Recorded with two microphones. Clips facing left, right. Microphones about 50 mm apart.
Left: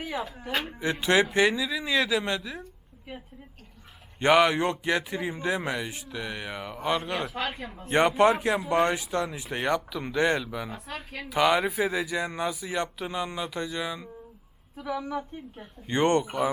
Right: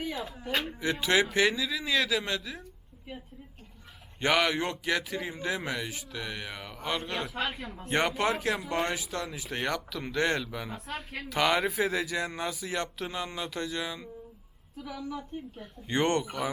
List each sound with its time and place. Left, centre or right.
0.0 s a sound: centre
0.7 s speech: left
1.5 s speech: centre
4.2 s speech: left
9.6 s speech: centre
14.8 s a woman's voice: left